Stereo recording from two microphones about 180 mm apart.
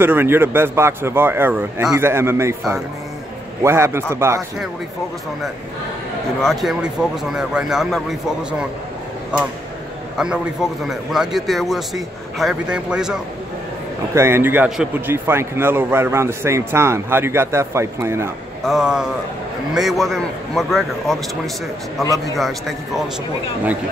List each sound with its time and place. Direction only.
0.0 s a man's voice: 10° right (ahead or behind)
3.6 s a man's voice: 15° right (ahead or behind)
6.4 s a man's voice: centre (ahead or behind)
10.1 s a man's voice: 5° right (ahead or behind)
18.7 s a man's voice: 5° right (ahead or behind)
22.4 s a man's voice: centre (ahead or behind)